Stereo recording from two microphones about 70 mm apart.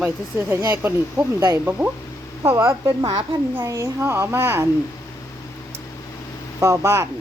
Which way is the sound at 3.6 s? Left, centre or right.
Right.